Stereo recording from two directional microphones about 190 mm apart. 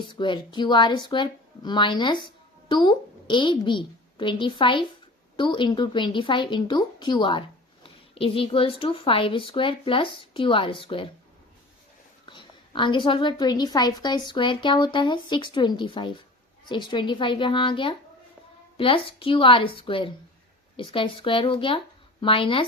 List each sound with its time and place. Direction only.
0.0 s speech: 25° left (ahead or behind)
12.3 s speech: 25° left (ahead or behind)